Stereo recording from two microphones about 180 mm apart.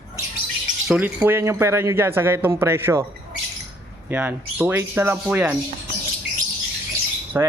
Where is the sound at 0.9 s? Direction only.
10° right (ahead or behind).